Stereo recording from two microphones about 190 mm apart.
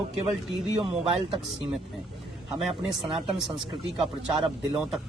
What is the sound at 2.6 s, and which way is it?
Speech, centre (ahead or behind).